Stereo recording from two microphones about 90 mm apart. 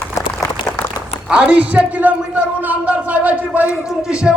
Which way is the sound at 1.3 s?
15° right (ahead or behind).